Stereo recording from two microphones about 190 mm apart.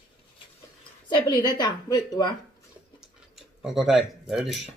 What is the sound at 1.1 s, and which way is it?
Speech, 25° left (ahead or behind).